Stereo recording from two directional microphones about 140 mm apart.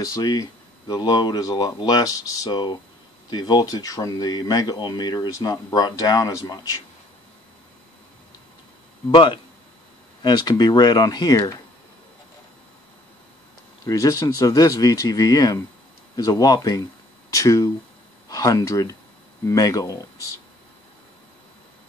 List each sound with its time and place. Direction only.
0.0 s speech: 25° left (ahead or behind)
9.1 s speech: 35° left (ahead or behind)
13.8 s speech: 25° left (ahead or behind)